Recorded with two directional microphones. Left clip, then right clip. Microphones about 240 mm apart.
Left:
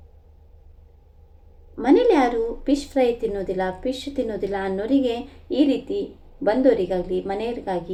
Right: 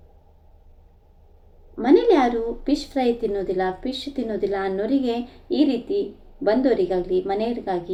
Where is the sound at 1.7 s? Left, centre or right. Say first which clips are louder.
Even; centre.